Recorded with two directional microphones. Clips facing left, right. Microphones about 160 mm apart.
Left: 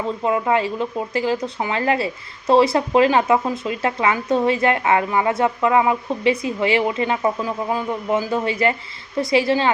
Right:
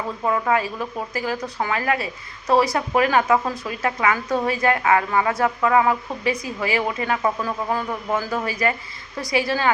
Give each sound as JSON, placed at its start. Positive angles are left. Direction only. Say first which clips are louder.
{"t": 0.3, "sound": "speech", "louder": "left 2 dB", "side_deg": 20}